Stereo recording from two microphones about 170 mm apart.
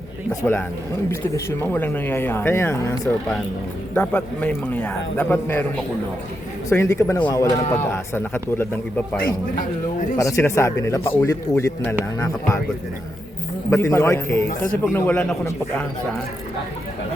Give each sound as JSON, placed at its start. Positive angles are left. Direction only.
{"t": 0.3, "sound": "a man's voice", "side_deg": 15}
{"t": 6.7, "sound": "a man's voice", "side_deg": 15}
{"t": 10.2, "sound": "a man's voice", "side_deg": 20}
{"t": 13.7, "sound": "a man's voice", "side_deg": 15}